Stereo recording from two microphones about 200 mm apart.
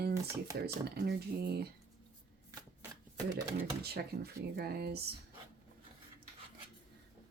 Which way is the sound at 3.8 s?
55° right (ahead or behind).